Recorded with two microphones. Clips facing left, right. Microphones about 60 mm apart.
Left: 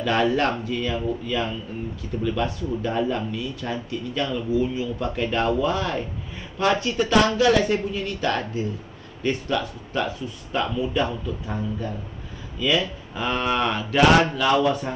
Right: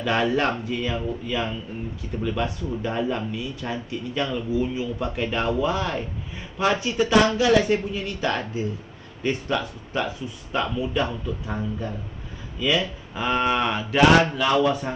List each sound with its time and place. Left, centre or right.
0.0 s speech: centre
10.5 s speech: centre